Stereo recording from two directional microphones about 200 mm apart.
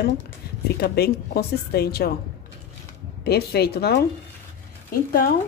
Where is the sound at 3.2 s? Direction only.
55° left (ahead or behind).